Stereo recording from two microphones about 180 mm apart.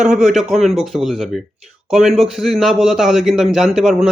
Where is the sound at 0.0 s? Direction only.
5° right (ahead or behind).